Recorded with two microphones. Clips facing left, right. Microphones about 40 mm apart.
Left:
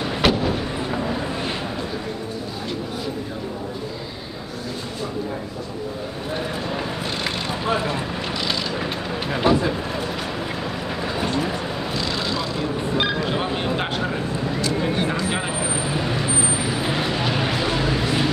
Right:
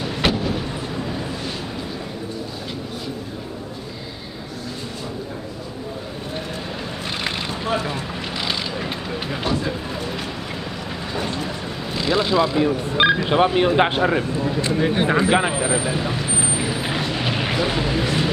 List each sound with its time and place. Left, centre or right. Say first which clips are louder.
0.2 s vehicle: left 2 dB; centre
9.3 s a sound: left 6 dB; centre
11.1 s vehicle: left 1 dB; centre
11.9 s vehicle: right 8 dB; centre
12.9 s speech: right 6 dB; right
15.6 s speech: right 4 dB; centre
15.9 s speech: even; centre
16.3 s vehicle: left 1 dB; centre